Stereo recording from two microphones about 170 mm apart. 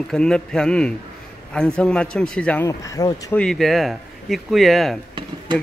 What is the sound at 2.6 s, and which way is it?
Speech, 20° left (ahead or behind).